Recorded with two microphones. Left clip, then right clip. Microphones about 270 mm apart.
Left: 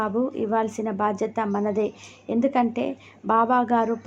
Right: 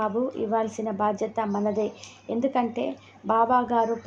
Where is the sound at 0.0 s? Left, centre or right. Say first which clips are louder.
Left 1 dB; centre.